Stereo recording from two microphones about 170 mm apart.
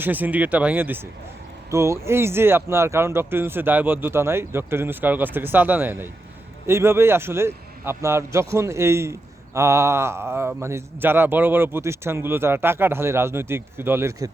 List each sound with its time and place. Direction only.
0.0 s a man's voice: 10° right (ahead or behind)